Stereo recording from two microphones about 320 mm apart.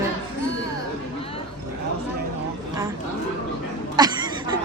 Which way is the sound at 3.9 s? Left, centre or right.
Centre.